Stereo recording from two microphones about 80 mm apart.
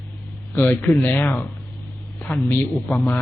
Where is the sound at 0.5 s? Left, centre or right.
Left.